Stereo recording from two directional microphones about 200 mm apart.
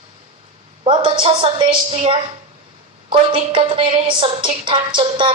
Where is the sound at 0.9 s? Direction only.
25° right (ahead or behind).